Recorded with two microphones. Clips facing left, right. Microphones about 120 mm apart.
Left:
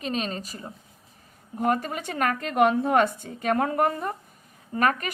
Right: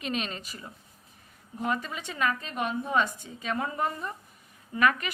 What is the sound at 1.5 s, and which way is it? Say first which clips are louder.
A woman's voice: left 6 dB; 50° left (ahead or behind).